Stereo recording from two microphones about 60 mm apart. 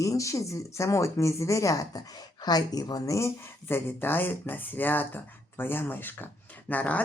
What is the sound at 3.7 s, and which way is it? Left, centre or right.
A woman's voice, left.